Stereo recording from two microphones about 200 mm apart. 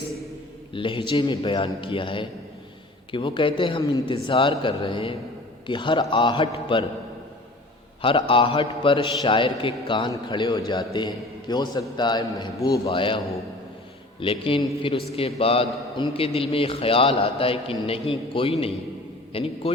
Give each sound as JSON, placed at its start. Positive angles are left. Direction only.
{"t": 0.7, "sound": "a man's voice", "side_deg": 25}
{"t": 8.0, "sound": "a man's voice", "side_deg": 25}